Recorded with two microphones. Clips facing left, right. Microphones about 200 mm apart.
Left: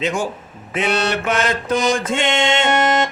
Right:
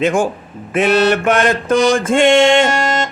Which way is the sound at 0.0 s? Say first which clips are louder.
Right 6 dB; 50° right (ahead or behind).